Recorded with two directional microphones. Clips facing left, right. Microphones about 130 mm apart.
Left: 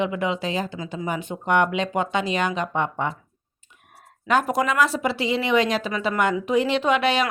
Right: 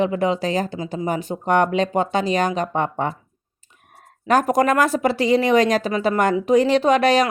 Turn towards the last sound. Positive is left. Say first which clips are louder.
# right 5 dB
turn(degrees=-40)  # may be behind; listen again after turning